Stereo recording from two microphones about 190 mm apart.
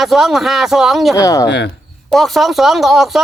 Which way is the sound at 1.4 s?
65° left (ahead or behind).